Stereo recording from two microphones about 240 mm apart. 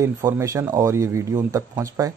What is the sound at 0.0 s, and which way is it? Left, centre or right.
Speech, centre.